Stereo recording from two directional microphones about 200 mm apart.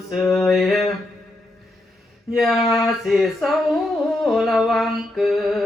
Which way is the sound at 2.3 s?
Centre (ahead or behind).